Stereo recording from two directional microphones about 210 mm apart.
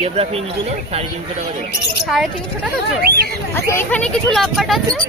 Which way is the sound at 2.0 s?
Centre (ahead or behind).